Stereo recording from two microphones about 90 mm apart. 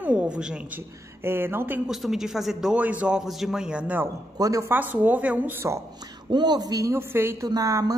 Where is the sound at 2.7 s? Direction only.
15° right (ahead or behind).